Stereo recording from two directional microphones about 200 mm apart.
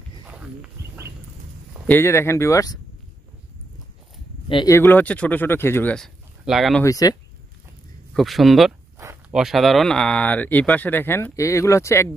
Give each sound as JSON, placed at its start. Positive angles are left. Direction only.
{"t": 0.3, "sound": "wild animals", "side_deg": -10}
{"t": 1.9, "sound": "speech", "side_deg": 10}
{"t": 4.5, "sound": "speech", "side_deg": 20}
{"t": 6.8, "sound": "speech", "side_deg": 15}
{"t": 8.1, "sound": "speech", "side_deg": 0}